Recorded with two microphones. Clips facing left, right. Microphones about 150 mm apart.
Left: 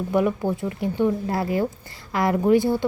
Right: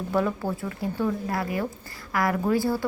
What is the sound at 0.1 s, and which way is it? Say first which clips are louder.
Speech: left 4 dB; 15° left (ahead or behind).